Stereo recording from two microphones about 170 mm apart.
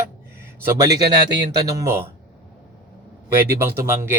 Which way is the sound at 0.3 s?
20° right (ahead or behind).